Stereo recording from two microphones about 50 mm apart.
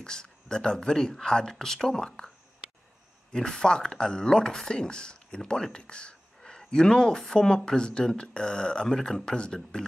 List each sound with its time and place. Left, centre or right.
0.0 s speech: centre
3.3 s speech: centre